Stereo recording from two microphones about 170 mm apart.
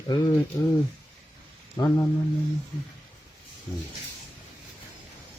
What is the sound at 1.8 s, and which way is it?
Speech, 15° left (ahead or behind).